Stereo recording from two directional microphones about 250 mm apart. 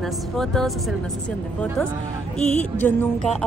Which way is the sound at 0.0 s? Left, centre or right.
Centre.